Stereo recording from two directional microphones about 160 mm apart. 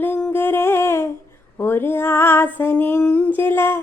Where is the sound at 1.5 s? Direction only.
15° left (ahead or behind).